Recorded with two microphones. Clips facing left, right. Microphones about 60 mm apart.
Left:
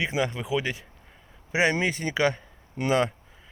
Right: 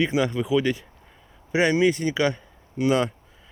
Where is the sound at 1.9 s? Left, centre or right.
Left.